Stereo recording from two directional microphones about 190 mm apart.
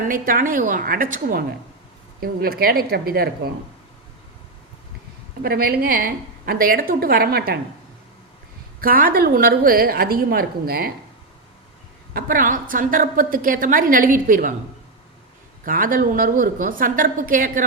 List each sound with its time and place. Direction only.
0.1 s a woman's voice: 45° right (ahead or behind)
5.4 s a woman's voice: 55° right (ahead or behind)
8.8 s a woman's voice: 50° right (ahead or behind)
12.1 s a woman's voice: 45° right (ahead or behind)
15.6 s a woman's voice: 45° right (ahead or behind)